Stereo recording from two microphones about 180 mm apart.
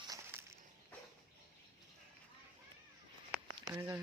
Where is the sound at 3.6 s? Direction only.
20° right (ahead or behind).